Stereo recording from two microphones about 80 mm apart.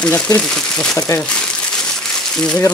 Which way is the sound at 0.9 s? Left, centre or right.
Left.